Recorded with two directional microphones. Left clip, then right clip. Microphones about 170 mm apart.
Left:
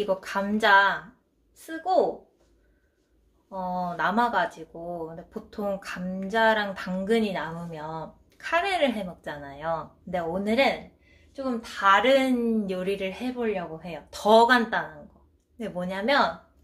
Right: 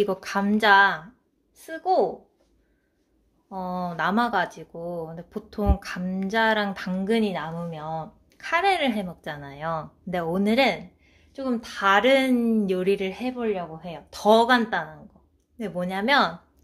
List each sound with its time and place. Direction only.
0.0 s a woman's voice: 50° right (ahead or behind)
3.4 s a woman's voice: 45° right (ahead or behind)